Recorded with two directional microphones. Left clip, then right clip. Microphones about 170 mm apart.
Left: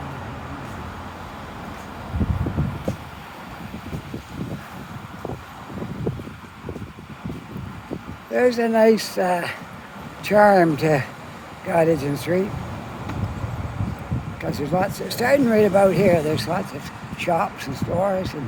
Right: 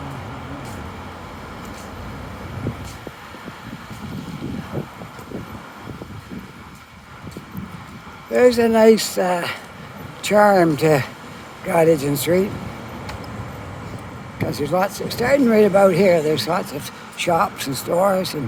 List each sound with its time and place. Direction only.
8.3 s speech: 15° right (ahead or behind)
14.3 s speech: 15° right (ahead or behind)
15.0 s speech: 5° right (ahead or behind)
15.4 s speech: 15° right (ahead or behind)